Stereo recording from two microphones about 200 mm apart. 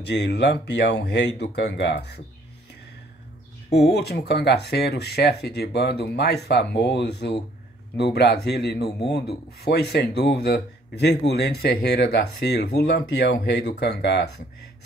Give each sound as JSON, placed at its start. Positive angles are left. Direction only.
{"t": 0.0, "sound": "speech", "side_deg": 55}
{"t": 3.7, "sound": "speech", "side_deg": 55}